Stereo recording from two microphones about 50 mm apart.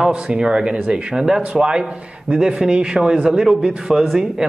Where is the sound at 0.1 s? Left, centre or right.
Centre.